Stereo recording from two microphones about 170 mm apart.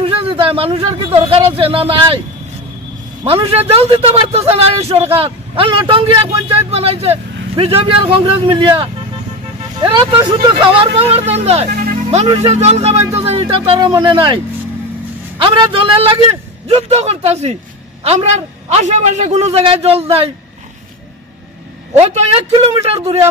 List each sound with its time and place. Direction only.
0.0 s speech: 35° right (ahead or behind)
3.3 s a man's voice: 35° right (ahead or behind)
10.2 s a man's voice: 30° right (ahead or behind)
11.7 s music: 55° right (ahead or behind)
12.4 s a man's voice: 40° right (ahead or behind)
21.9 s a man's voice: 40° right (ahead or behind)